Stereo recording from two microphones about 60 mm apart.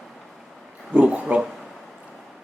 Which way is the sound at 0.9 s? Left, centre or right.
Right.